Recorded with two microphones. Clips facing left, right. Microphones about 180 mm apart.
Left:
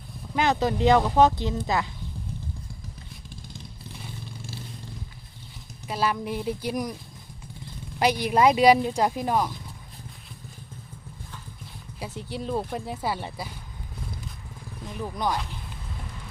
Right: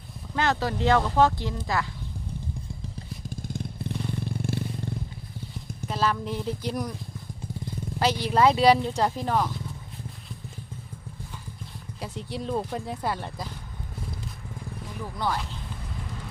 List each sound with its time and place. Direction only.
0.3 s speech: 15° left (ahead or behind)
3.2 s motorcycle: 50° right (ahead or behind)
5.9 s speech: 10° left (ahead or behind)
7.9 s speech: 15° left (ahead or behind)
11.9 s speech: centre (ahead or behind)
14.9 s speech: 15° left (ahead or behind)